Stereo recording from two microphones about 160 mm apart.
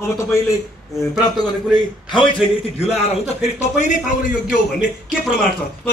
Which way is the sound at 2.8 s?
40° left (ahead or behind).